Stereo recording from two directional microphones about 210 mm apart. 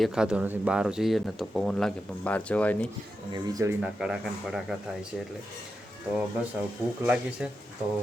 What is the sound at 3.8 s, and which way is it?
Speech, centre (ahead or behind).